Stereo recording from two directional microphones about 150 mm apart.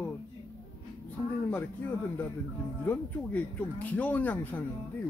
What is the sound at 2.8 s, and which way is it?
Speech, 10° left (ahead or behind).